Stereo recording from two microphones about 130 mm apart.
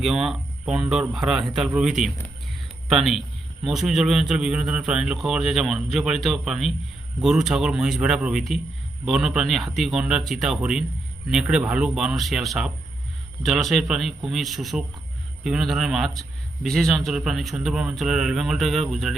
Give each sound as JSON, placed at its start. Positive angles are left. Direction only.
{"t": 0.0, "sound": "a man's voice", "side_deg": 0}